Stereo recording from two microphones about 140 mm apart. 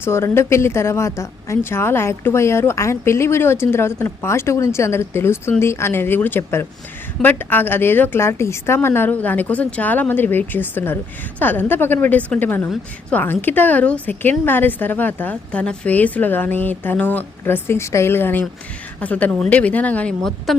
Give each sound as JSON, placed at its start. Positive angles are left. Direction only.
{"t": 0.0, "sound": "a woman's voice", "side_deg": 20}